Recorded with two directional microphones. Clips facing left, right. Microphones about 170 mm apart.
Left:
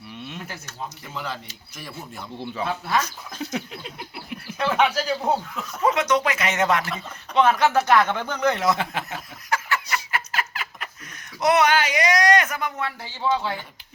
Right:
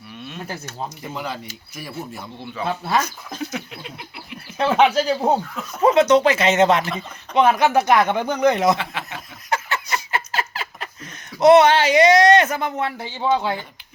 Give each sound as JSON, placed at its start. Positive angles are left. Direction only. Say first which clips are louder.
{"t": 0.4, "sound": "speech", "louder": "right 5 dB", "side_deg": -35}
{"t": 1.1, "sound": "speech", "louder": "right 2 dB", "side_deg": -15}
{"t": 2.8, "sound": "speech", "louder": "right 3 dB", "side_deg": -30}
{"t": 3.5, "sound": "a sound", "louder": "left 1 dB", "side_deg": 35}
{"t": 4.5, "sound": "speech", "louder": "right 5 dB", "side_deg": -25}
{"t": 8.8, "sound": "speech", "louder": "left 1 dB", "side_deg": 45}
{"t": 9.5, "sound": "a sound", "louder": "right 2 dB", "side_deg": -25}
{"t": 11.3, "sound": "speech", "louder": "right 7 dB", "side_deg": -25}